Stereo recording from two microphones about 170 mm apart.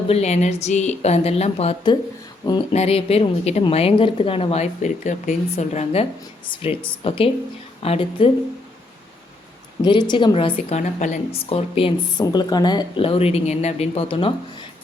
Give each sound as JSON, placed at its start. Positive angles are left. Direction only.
{"t": 0.1, "sound": "a woman's voice", "side_deg": 40}
{"t": 9.8, "sound": "a woman's voice", "side_deg": 25}